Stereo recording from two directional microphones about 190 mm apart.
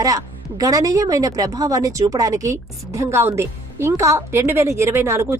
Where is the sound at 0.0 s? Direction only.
20° right (ahead or behind).